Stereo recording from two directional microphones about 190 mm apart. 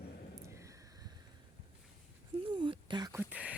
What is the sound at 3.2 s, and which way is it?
Speech, 5° right (ahead or behind).